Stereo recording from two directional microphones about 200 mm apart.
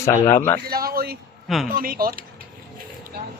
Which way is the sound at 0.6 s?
50° right (ahead or behind).